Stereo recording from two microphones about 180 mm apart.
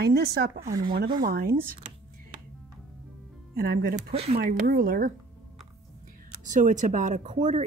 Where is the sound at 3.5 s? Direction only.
55° right (ahead or behind).